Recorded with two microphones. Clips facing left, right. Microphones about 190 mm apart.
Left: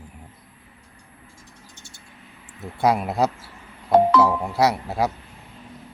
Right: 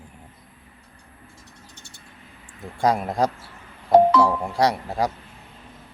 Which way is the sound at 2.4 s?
5° left (ahead or behind).